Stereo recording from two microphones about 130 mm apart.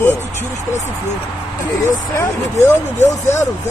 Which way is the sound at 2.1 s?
20° left (ahead or behind).